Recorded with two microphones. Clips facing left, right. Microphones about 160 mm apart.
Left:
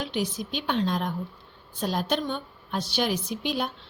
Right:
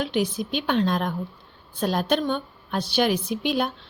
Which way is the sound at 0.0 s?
60° right (ahead or behind).